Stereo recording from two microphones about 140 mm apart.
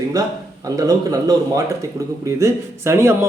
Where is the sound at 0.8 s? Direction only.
25° right (ahead or behind).